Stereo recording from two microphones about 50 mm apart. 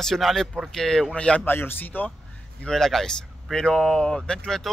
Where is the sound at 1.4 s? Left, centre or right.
Left.